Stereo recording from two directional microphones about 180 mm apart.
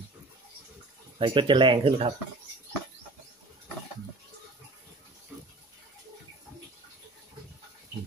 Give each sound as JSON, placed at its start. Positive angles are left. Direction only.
{"t": 1.1, "sound": "speech", "side_deg": -30}